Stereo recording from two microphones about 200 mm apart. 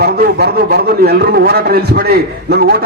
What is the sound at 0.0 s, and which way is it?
A man's voice, 50° right (ahead or behind).